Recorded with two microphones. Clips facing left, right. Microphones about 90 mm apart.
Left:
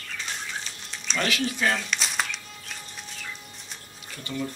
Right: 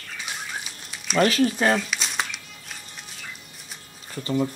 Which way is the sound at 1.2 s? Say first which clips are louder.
Right 7 dB; 40° right (ahead or behind).